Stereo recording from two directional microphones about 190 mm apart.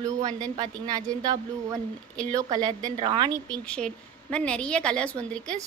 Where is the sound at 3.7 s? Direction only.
5° left (ahead or behind).